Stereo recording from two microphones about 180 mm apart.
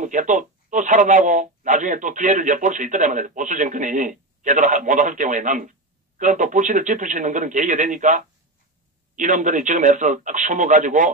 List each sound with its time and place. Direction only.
0.0 s speech: 45° right (ahead or behind)